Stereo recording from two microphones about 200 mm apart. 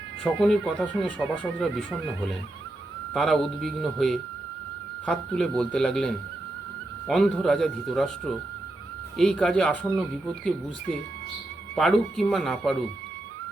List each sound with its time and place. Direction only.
0.2 s speech: centre (ahead or behind)
11.7 s speech: centre (ahead or behind)